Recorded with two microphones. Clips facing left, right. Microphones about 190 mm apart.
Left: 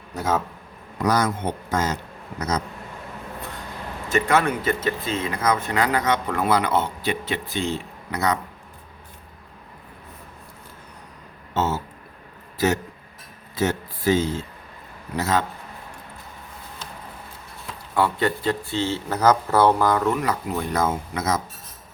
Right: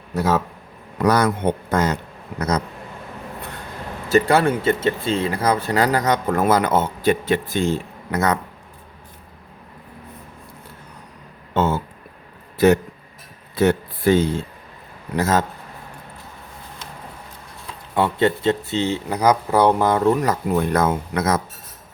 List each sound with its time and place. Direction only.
0.2 s a man's voice: 70° right (ahead or behind)
4.1 s speech: 30° right (ahead or behind); by 8.4 s 50° right (ahead or behind)
11.5 s a sound: 55° right (ahead or behind)
12.5 s a man's voice: 55° right (ahead or behind)
17.9 s speech: 25° right (ahead or behind)
20.1 s speech: 40° right (ahead or behind)
20.7 s a man's voice: 60° right (ahead or behind)